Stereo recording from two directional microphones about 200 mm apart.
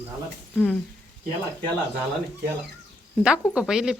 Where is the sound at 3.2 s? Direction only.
5° right (ahead or behind).